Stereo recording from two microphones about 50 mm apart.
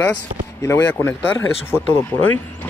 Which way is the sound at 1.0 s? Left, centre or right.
Left.